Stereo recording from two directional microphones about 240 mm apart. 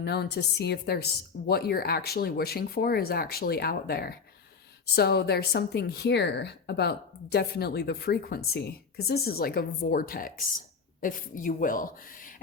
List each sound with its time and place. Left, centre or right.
0.0 s a woman's voice: left